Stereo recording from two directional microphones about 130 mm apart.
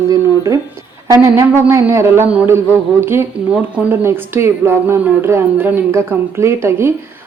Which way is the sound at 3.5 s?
10° right (ahead or behind).